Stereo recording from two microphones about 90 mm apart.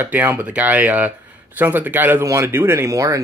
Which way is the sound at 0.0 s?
20° right (ahead or behind).